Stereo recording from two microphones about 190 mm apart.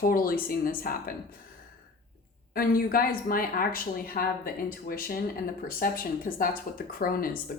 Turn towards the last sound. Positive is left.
turn(degrees=50)  # may be behind; listen again after turning